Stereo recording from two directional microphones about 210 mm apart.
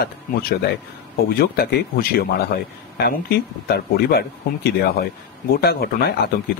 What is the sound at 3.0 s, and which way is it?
Speech, 50° left (ahead or behind).